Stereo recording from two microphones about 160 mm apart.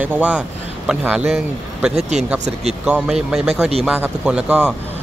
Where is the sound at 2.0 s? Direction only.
45° right (ahead or behind).